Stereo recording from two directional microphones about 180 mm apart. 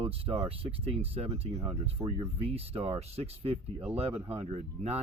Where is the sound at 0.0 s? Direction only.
30° right (ahead or behind).